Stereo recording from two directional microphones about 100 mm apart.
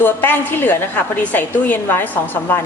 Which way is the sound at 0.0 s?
20° left (ahead or behind).